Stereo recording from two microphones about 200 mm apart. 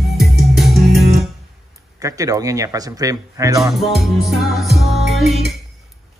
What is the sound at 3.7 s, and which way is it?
Music, centre (ahead or behind).